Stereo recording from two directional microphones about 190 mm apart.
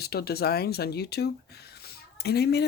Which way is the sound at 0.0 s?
55° left (ahead or behind).